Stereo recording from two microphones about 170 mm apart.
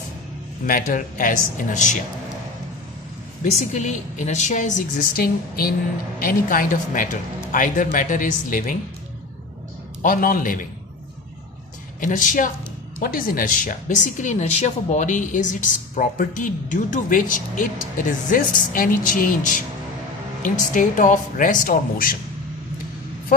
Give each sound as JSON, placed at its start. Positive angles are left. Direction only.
{"t": 0.7, "sound": "speech", "side_deg": 55}
{"t": 3.6, "sound": "speech", "side_deg": 45}
{"t": 5.1, "sound": "a woman's voice", "side_deg": 60}
{"t": 10.0, "sound": "speech", "side_deg": 55}
{"t": 11.9, "sound": "speech", "side_deg": 50}